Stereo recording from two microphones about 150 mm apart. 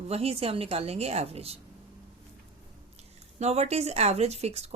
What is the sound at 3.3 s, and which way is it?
Speech, 45° right (ahead or behind).